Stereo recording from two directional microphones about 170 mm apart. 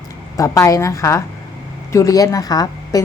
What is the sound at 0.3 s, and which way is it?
A woman's voice, 20° left (ahead or behind).